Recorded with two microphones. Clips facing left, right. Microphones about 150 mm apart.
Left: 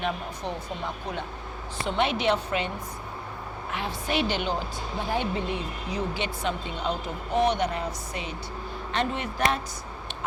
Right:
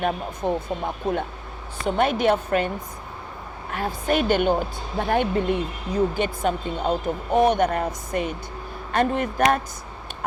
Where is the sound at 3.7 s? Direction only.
45° right (ahead or behind).